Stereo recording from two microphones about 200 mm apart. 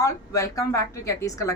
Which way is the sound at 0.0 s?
15° left (ahead or behind).